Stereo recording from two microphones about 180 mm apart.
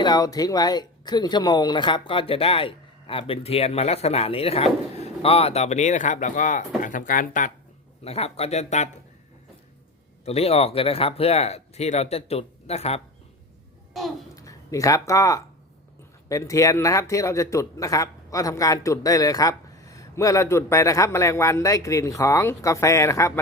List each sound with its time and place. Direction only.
0.0 s speech: 20° left (ahead or behind); by 7.5 s 45° left (ahead or behind)
8.0 s speech: 35° left (ahead or behind)
10.2 s speech: 35° left (ahead or behind)
14.3 s a man's voice: 20° left (ahead or behind)